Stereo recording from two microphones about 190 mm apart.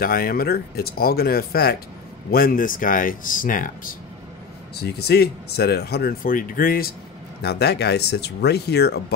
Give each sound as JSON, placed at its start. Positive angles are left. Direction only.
{"t": 0.0, "sound": "speech", "side_deg": 50}
{"t": 4.7, "sound": "speech", "side_deg": 60}
{"t": 7.4, "sound": "speech", "side_deg": 60}